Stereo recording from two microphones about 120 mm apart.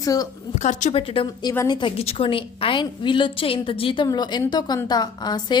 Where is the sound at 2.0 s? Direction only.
55° left (ahead or behind).